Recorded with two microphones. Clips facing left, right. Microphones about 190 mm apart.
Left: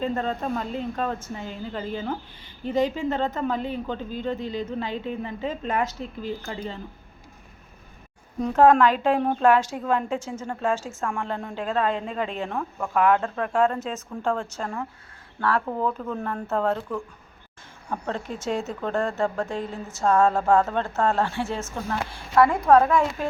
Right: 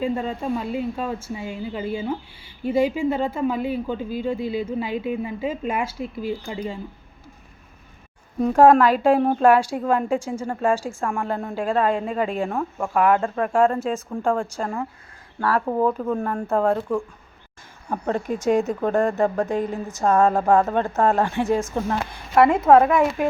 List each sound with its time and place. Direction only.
0.0 s speech: 10° right (ahead or behind)
8.4 s speech: 10° right (ahead or behind)
17.8 s speech: 15° right (ahead or behind)